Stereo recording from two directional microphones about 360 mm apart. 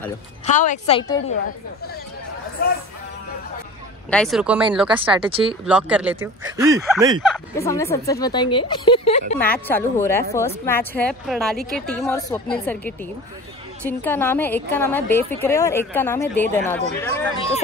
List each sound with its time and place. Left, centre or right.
0.5 s a woman's voice: centre
2.6 s speech: left
4.1 s a woman's voice: centre
4.8 s speech: centre
7.2 s a woman's voice: centre
9.4 s a woman's voice: centre